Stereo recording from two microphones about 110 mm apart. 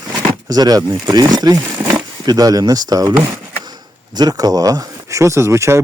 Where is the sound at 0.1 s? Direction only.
35° right (ahead or behind).